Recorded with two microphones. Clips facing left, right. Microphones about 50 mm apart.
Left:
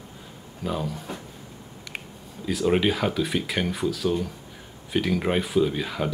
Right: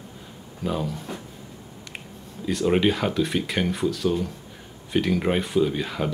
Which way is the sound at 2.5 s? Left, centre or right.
Centre.